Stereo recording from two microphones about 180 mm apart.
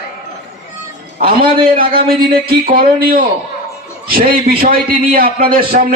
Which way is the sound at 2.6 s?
50° right (ahead or behind).